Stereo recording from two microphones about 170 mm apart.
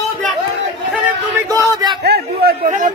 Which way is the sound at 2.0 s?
70° right (ahead or behind).